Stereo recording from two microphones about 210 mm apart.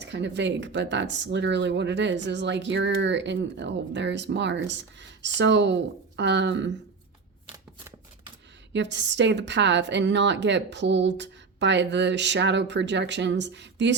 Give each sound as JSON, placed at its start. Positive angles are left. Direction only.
{"t": 0.0, "sound": "speech", "side_deg": -55}
{"t": 7.4, "sound": "shuffling cards", "side_deg": -15}
{"t": 8.7, "sound": "speech", "side_deg": -55}